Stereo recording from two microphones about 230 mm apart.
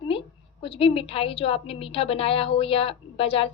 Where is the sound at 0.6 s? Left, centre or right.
Left.